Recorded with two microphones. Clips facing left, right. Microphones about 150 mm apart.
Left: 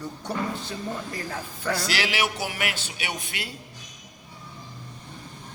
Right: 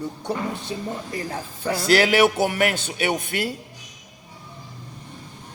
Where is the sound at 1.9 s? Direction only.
50° right (ahead or behind).